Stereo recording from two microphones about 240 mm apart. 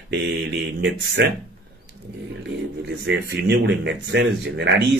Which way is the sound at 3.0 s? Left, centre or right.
Right.